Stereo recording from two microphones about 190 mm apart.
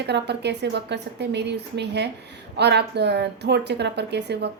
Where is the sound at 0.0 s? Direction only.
60° right (ahead or behind).